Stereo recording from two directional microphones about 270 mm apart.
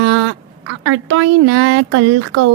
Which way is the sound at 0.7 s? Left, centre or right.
Right.